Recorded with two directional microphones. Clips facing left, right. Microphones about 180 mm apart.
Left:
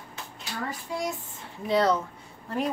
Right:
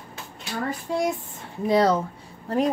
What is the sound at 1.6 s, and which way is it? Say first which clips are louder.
Speech: right 4 dB; 40° right (ahead or behind).